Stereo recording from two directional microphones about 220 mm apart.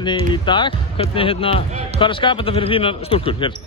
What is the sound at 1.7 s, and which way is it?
Speech, 30° right (ahead or behind).